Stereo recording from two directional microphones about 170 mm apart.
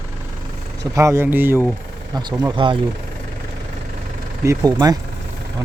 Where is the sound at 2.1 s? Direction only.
20° right (ahead or behind).